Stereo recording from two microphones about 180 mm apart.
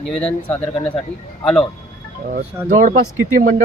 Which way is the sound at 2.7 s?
45° right (ahead or behind).